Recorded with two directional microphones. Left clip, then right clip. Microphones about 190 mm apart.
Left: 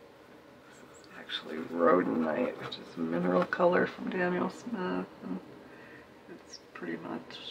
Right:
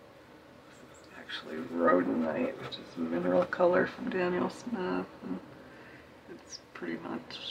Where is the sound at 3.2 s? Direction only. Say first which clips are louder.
Right 1 dB; 25° left (ahead or behind).